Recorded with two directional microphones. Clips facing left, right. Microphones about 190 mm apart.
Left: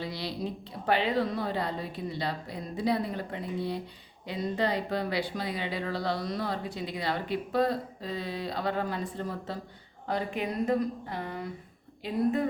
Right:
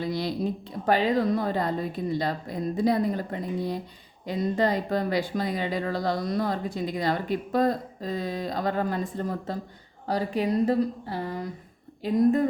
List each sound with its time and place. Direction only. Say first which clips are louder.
0.0 s speech: right 6 dB; 50° right (ahead or behind)